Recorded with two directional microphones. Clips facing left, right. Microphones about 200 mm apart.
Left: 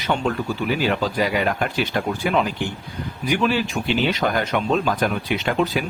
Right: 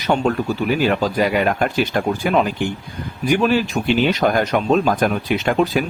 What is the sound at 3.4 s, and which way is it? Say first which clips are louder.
Speech: right 2 dB; 45° right (ahead or behind).